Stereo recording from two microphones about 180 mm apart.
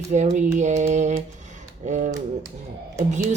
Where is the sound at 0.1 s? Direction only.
40° right (ahead or behind).